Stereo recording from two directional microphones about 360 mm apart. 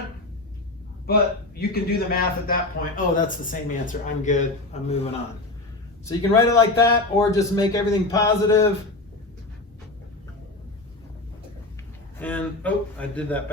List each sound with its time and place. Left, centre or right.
1.0 s a man's voice: left
6.1 s a man's voice: centre
12.2 s speech: centre